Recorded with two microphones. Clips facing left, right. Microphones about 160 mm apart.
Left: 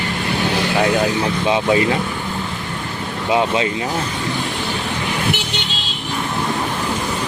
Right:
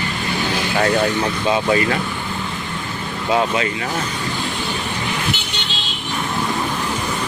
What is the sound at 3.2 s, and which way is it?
Speech, 20° left (ahead or behind).